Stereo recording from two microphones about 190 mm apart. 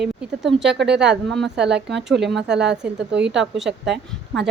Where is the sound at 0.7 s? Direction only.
65° right (ahead or behind).